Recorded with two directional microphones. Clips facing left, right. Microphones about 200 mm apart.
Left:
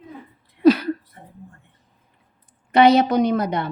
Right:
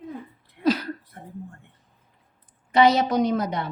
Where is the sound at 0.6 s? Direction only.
60° left (ahead or behind).